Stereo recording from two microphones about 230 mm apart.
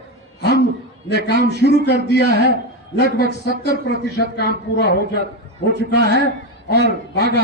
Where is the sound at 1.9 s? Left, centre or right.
Left.